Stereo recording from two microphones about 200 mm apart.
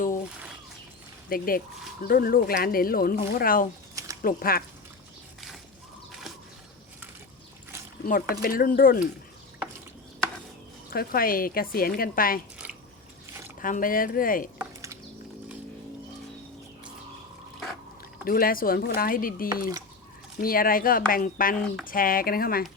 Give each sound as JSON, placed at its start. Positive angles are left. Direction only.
{"t": 1.3, "sound": "speech", "side_deg": 45}
{"t": 3.9, "sound": "a sound", "side_deg": -15}
{"t": 4.2, "sound": "speech", "side_deg": 45}
{"t": 6.1, "sound": "a sound", "side_deg": 0}
{"t": 8.0, "sound": "speech", "side_deg": 45}
{"t": 10.9, "sound": "speech", "side_deg": 45}
{"t": 13.6, "sound": "speech", "side_deg": 40}
{"t": 14.6, "sound": "a sound", "side_deg": -15}
{"t": 18.3, "sound": "speech", "side_deg": 45}
{"t": 21.5, "sound": "speech", "side_deg": 5}
{"t": 21.8, "sound": "speech", "side_deg": 45}